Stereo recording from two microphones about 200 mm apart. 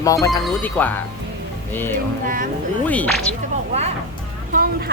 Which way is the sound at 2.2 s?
45° right (ahead or behind).